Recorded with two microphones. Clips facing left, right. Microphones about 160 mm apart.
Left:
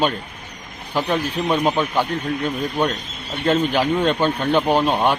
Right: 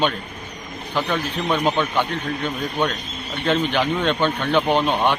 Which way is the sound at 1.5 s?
5° left (ahead or behind).